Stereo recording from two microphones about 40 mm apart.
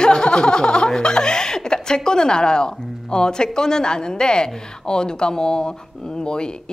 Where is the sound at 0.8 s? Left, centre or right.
Centre.